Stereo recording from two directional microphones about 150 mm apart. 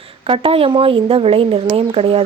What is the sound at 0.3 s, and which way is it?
Speech, 40° right (ahead or behind).